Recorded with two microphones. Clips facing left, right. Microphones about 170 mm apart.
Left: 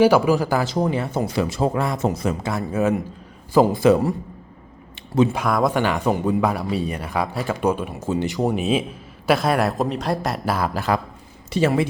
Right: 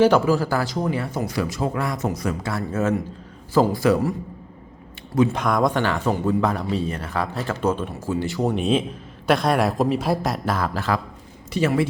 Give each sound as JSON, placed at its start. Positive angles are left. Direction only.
{"t": 0.0, "sound": "speech", "side_deg": 15}
{"t": 5.3, "sound": "a man's voice", "side_deg": 5}
{"t": 5.8, "sound": "a man's voice", "side_deg": 15}
{"t": 11.5, "sound": "speech", "side_deg": 30}